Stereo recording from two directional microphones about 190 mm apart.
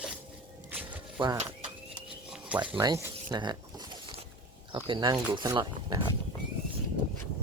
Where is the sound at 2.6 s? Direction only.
25° right (ahead or behind).